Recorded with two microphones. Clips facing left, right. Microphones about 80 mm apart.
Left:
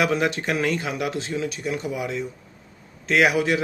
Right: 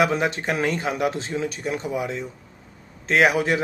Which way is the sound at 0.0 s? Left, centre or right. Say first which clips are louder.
Right 1 dB; right.